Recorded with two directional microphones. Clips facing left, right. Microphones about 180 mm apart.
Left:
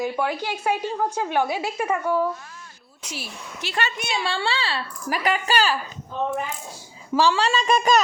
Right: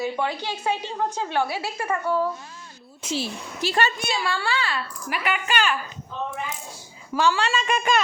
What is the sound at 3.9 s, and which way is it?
A woman's voice, 25° left (ahead or behind).